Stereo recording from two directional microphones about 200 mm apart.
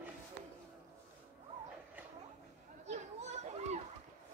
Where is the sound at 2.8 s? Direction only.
35° right (ahead or behind).